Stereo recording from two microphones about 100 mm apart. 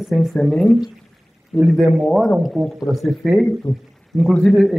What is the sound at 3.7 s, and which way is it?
Speech, 35° left (ahead or behind).